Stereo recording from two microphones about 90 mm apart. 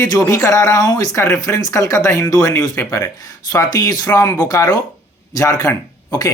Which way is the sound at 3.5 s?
45° left (ahead or behind).